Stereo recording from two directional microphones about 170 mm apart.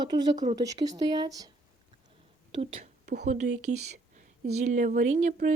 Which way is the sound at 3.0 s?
75° right (ahead or behind).